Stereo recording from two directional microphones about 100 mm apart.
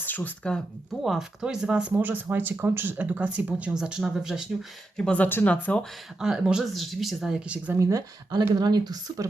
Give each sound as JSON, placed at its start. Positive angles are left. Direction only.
{"t": 0.0, "sound": "speech", "side_deg": 20}
{"t": 1.0, "sound": "speech", "side_deg": -5}
{"t": 4.9, "sound": "speech", "side_deg": 10}
{"t": 6.1, "sound": "speech", "side_deg": -5}
{"t": 7.7, "sound": "speech", "side_deg": -30}
{"t": 8.5, "sound": "speech", "side_deg": -45}